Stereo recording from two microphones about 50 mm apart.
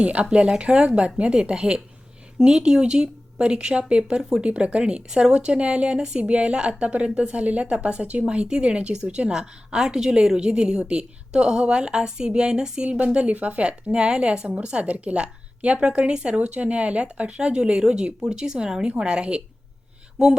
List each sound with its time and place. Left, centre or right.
0.0 s speech: right